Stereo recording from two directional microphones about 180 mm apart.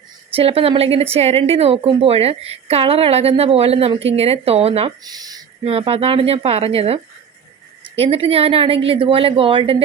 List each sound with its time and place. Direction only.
0.3 s speech: 30° right (ahead or behind)
5.0 s speech: 20° right (ahead or behind)
5.6 s speech: 30° right (ahead or behind)